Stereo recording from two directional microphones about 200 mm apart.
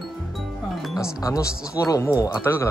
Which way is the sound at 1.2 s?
15° left (ahead or behind).